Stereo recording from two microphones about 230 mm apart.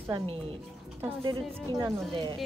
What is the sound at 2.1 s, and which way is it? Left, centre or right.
Speech, centre.